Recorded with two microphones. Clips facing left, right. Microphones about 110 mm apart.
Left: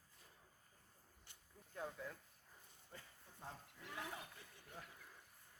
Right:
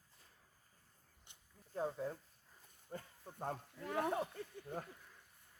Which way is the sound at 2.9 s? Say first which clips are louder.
Right 11 dB; 45° right (ahead or behind).